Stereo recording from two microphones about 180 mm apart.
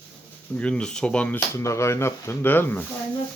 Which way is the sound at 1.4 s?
15° left (ahead or behind).